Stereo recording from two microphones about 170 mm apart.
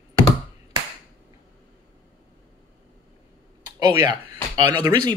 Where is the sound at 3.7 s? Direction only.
20° right (ahead or behind).